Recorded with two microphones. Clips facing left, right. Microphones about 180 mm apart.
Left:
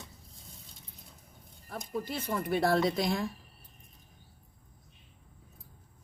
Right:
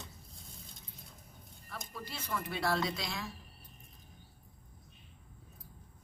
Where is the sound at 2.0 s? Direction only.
50° left (ahead or behind).